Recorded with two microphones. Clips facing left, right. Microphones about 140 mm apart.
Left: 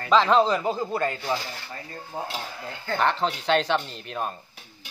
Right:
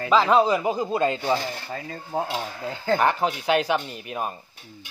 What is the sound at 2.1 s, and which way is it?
Speech, 70° right (ahead or behind).